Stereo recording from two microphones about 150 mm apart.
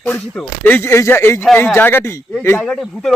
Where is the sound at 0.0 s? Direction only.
10° left (ahead or behind).